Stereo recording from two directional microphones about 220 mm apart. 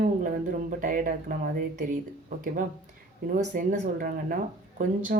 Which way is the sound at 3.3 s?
35° right (ahead or behind).